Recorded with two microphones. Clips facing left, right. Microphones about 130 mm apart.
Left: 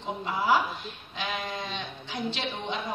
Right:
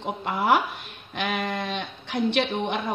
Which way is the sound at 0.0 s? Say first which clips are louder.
Right 3 dB; 60° right (ahead or behind).